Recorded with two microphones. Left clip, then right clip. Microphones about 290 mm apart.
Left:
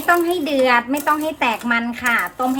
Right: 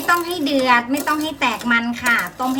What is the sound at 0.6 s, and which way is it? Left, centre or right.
A woman's voice, centre.